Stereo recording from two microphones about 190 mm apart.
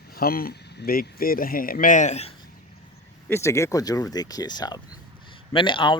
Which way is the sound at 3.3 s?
15° left (ahead or behind).